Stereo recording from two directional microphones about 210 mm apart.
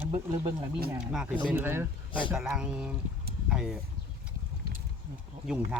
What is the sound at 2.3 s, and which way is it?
Speech, 5° right (ahead or behind).